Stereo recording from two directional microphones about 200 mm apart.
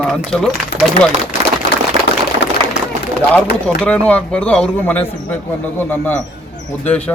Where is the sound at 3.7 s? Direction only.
5° left (ahead or behind).